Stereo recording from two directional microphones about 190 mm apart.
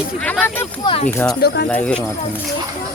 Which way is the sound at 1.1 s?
10° left (ahead or behind).